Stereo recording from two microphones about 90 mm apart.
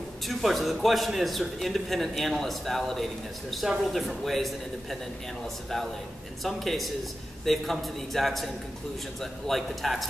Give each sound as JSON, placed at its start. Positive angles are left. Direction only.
{"t": 0.3, "sound": "a man's voice", "side_deg": 0}
{"t": 6.4, "sound": "a man's voice", "side_deg": 0}